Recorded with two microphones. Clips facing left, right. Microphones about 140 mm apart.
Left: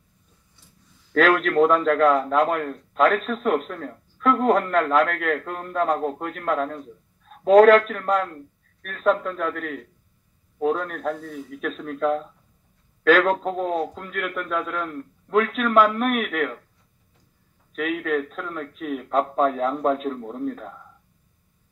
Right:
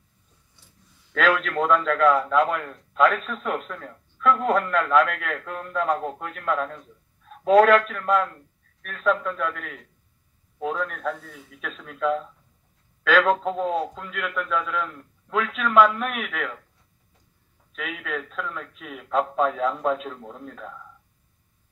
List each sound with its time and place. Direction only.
1.1 s a man's voice: 40° left (ahead or behind)
17.7 s a man's voice: 45° left (ahead or behind)